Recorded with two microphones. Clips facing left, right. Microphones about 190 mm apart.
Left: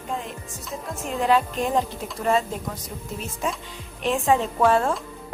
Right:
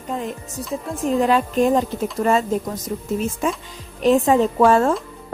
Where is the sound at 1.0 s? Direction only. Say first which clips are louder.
Right 4 dB; 45° right (ahead or behind).